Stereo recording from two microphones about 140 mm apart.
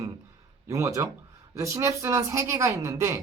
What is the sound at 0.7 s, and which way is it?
Speech, 20° right (ahead or behind).